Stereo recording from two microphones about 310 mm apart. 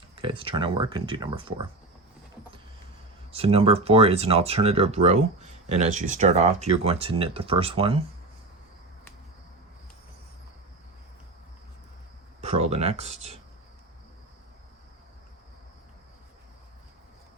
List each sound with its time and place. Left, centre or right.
0.2 s speech: centre
3.3 s speech: centre
12.4 s speech: right